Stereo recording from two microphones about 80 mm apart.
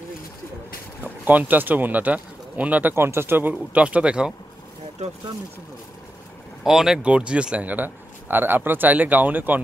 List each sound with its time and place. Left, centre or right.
1.0 s speech: right
6.6 s speech: centre; by 9.6 s right